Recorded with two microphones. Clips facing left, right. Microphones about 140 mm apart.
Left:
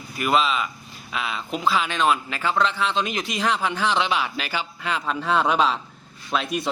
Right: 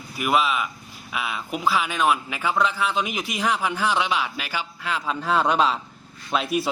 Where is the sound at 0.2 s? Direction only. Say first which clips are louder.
Left 1 dB; 5° right (ahead or behind).